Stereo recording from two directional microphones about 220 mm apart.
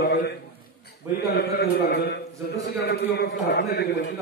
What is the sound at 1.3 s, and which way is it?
A man's voice, 45° left (ahead or behind).